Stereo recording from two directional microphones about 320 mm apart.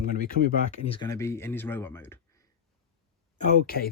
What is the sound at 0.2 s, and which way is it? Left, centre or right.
Speech, left.